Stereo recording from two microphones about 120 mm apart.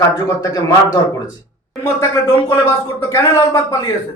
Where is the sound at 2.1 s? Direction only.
20° left (ahead or behind).